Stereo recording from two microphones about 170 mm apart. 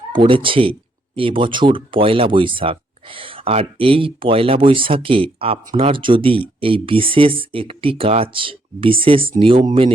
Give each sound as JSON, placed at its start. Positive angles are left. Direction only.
{"t": 0.1, "sound": "speech", "side_deg": -30}